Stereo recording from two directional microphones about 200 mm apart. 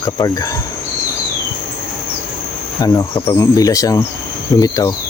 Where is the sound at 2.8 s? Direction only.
20° left (ahead or behind).